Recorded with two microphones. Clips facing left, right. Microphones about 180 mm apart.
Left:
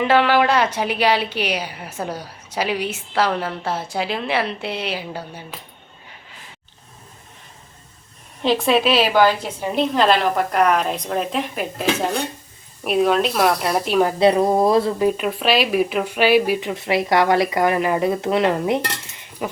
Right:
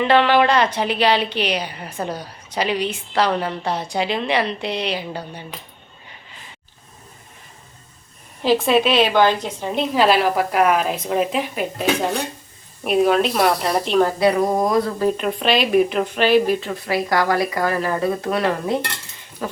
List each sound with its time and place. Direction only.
0.0 s a woman's voice: 5° left (ahead or behind)
8.4 s speech: centre (ahead or behind)
9.9 s speech: 5° right (ahead or behind)
14.2 s speech: 25° left (ahead or behind)
14.9 s a woman's voice: 10° left (ahead or behind)